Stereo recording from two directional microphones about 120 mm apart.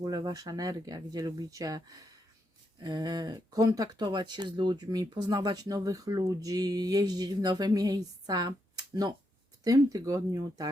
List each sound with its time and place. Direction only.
0.0 s speech: 35° right (ahead or behind)